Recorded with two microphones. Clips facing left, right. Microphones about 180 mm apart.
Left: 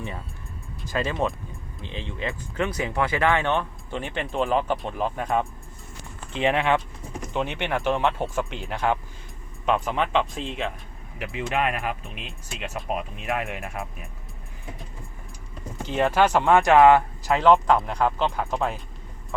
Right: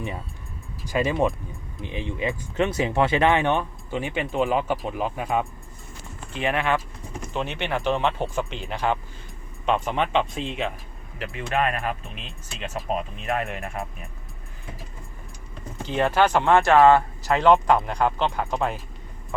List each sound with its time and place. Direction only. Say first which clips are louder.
0.9 s speech: right 3 dB; 15° right (ahead or behind)
6.3 s speech: left 2 dB; 20° left (ahead or behind); by 10.7 s centre (ahead or behind)
11.2 s speech: right 1 dB; 10° left (ahead or behind)
11.8 s speech: right 1 dB; centre (ahead or behind)
15.8 s speech: even; 5° left (ahead or behind)